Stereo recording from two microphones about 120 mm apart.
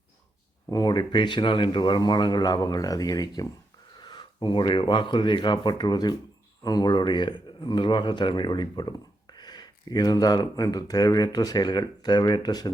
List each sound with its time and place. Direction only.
0.7 s a man's voice: 35° left (ahead or behind)